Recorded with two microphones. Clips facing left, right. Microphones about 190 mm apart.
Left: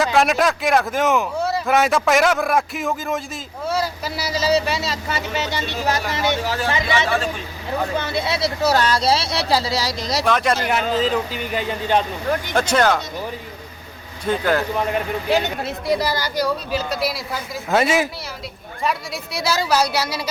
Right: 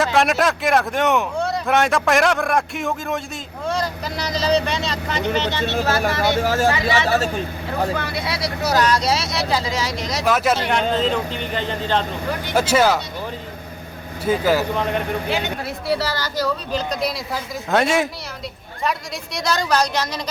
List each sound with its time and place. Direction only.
0.0 s speech: centre (ahead or behind); by 6.3 s 20° left (ahead or behind)
6.4 s speech: 45° right (ahead or behind)
7.9 s speech: 25° left (ahead or behind)
10.2 s speech: 5° right (ahead or behind); by 12.0 s 10° left (ahead or behind)
12.5 s speech: 5° right (ahead or behind)
14.3 s speech: 5° right (ahead or behind)
15.6 s speech: 15° left (ahead or behind)